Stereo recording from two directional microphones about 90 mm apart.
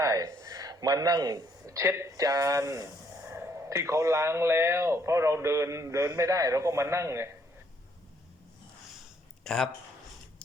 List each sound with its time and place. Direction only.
0.0 s a man's voice: 35° right (ahead or behind)
9.4 s speech: 5° left (ahead or behind)